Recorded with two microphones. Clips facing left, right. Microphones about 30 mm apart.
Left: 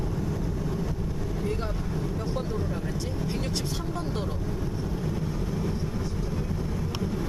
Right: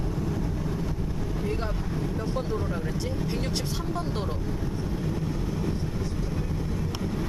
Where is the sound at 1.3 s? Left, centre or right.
Centre.